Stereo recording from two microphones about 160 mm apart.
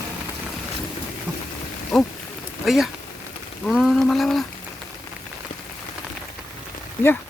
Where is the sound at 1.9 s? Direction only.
Centre (ahead or behind).